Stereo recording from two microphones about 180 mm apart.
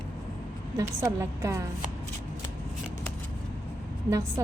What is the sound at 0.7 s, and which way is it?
Speech, 15° right (ahead or behind).